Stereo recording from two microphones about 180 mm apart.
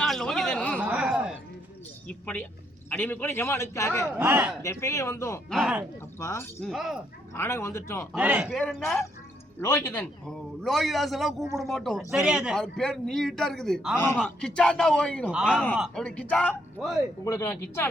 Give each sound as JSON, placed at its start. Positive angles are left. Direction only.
{"t": 0.0, "sound": "a sound", "side_deg": 0}
{"t": 0.8, "sound": "a sound", "side_deg": -5}
{"t": 2.0, "sound": "a man's voice", "side_deg": 5}
{"t": 4.0, "sound": "a man's voice", "side_deg": -10}
{"t": 4.6, "sound": "a man's voice", "side_deg": 15}
{"t": 5.5, "sound": "a man's voice", "side_deg": 0}
{"t": 6.1, "sound": "a man's voice", "side_deg": 15}
{"t": 6.7, "sound": "a man's voice", "side_deg": 0}
{"t": 7.3, "sound": "a man's voice", "side_deg": 15}
{"t": 8.1, "sound": "a man's voice", "side_deg": -5}
{"t": 9.6, "sound": "a man's voice", "side_deg": 15}
{"t": 10.2, "sound": "a man's voice", "side_deg": 0}